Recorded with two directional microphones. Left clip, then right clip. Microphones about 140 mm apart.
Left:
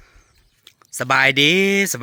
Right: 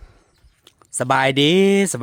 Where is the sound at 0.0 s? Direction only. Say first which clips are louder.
Left 1 dB; 35° right (ahead or behind).